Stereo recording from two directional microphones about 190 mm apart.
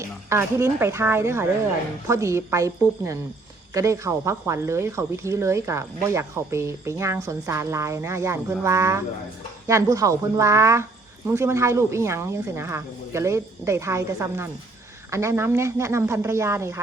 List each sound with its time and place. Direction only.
0.0 s speech: 15° right (ahead or behind)